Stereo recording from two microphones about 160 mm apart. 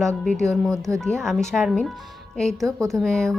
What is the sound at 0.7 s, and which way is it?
Speech, 20° right (ahead or behind).